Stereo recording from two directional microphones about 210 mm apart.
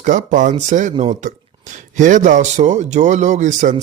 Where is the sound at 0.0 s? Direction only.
35° right (ahead or behind).